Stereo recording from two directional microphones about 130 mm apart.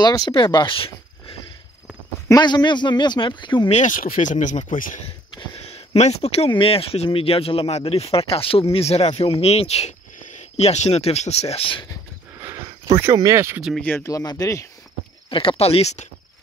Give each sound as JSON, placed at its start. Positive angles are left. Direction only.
{"t": 0.0, "sound": "speech", "side_deg": 30}
{"t": 2.2, "sound": "a man's voice", "side_deg": 30}
{"t": 3.7, "sound": "speech", "side_deg": 80}
{"t": 5.0, "sound": "speech", "side_deg": 50}
{"t": 12.4, "sound": "a sound", "side_deg": -25}
{"t": 13.6, "sound": "speech", "side_deg": 0}
{"t": 13.8, "sound": "speech", "side_deg": 20}
{"t": 15.2, "sound": "speech", "side_deg": 40}